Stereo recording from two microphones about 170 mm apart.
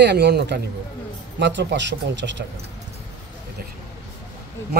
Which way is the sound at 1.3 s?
90° right.